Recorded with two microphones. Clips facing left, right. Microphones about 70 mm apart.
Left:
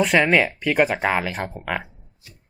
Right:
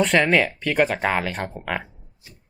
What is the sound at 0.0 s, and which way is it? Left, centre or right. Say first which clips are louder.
Speech: left 1 dB; centre.